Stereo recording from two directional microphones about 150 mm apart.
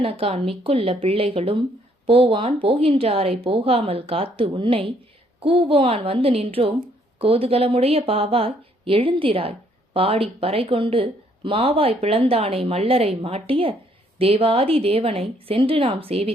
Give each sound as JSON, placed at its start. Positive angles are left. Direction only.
{"t": 0.0, "sound": "speech", "side_deg": -40}